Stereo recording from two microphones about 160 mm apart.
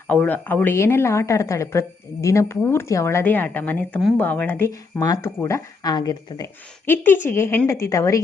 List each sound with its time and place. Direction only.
0.1 s a woman's voice: 10° left (ahead or behind)
6.8 s a woman's voice: 15° left (ahead or behind)